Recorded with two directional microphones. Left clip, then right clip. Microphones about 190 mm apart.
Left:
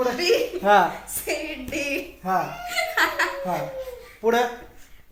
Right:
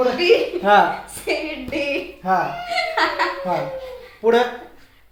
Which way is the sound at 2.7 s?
10° right (ahead or behind).